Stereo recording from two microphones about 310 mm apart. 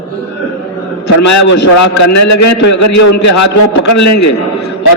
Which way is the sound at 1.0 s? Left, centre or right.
Left.